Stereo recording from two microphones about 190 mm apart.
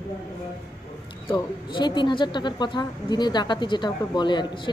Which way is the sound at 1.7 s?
25° left (ahead or behind).